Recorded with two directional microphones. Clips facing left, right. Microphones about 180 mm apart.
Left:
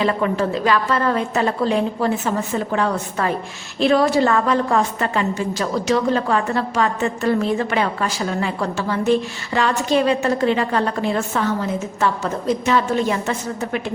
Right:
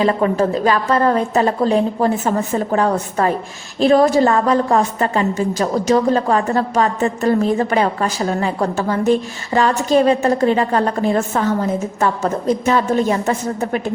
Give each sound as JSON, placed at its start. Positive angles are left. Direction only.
{"t": 0.0, "sound": "a woman's voice", "side_deg": -40}